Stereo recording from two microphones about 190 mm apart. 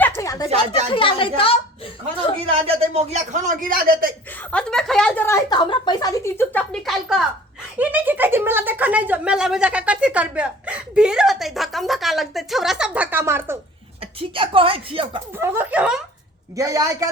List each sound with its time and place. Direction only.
0.2 s a sound: 20° left (ahead or behind)
0.9 s a woman's voice: 30° left (ahead or behind)
2.4 s speech: 30° right (ahead or behind); by 4.1 s 50° right (ahead or behind)
4.4 s speech: 5° left (ahead or behind)
5.5 s speech: 25° left (ahead or behind); by 7.2 s centre (ahead or behind)
7.8 s speech: 10° right (ahead or behind)
14.0 s speech: 30° right (ahead or behind)
15.3 s speech: 10° right (ahead or behind)
16.6 s speech: 15° right (ahead or behind)